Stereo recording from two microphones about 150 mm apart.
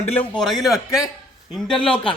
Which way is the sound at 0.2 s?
5° left (ahead or behind).